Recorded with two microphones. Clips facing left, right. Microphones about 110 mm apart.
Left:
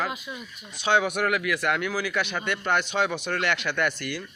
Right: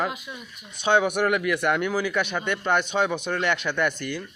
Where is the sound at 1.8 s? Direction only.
20° right (ahead or behind).